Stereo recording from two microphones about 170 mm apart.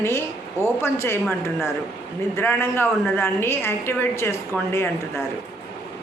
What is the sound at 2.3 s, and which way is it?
A woman's voice, 15° left (ahead or behind).